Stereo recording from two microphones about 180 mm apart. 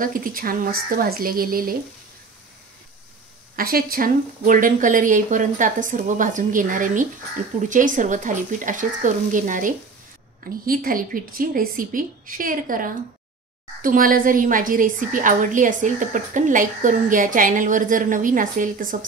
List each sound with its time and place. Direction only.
0.0 s a woman's voice: 50° right (ahead or behind)
3.5 s a woman's voice: 55° right (ahead or behind)